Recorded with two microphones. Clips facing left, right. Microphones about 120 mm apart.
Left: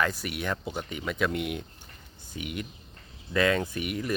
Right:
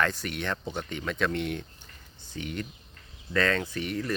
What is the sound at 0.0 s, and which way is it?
Speech, 10° left (ahead or behind).